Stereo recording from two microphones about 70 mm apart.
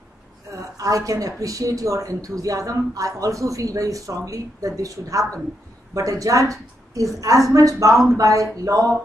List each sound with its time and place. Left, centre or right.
0.7 s speech: right